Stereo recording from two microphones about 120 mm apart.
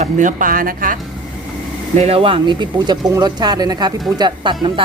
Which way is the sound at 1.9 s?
70° right (ahead or behind).